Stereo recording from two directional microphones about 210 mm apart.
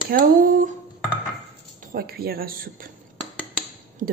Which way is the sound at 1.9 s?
45° right (ahead or behind).